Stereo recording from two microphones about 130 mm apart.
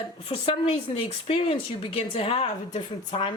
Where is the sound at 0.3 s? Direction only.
50° left (ahead or behind).